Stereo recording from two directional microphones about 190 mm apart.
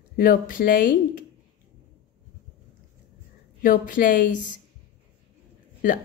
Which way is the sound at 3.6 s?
45° left (ahead or behind).